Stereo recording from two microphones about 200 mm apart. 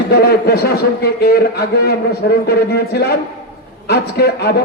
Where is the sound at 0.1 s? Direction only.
50° left (ahead or behind).